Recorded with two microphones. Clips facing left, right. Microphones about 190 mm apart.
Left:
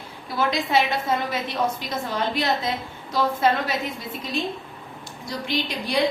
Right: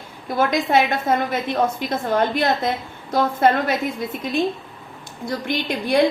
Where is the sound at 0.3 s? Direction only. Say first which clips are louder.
Right 5 dB; 50° right (ahead or behind).